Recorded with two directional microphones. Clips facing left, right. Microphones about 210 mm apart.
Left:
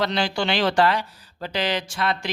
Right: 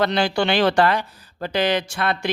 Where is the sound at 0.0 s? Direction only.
55° right (ahead or behind).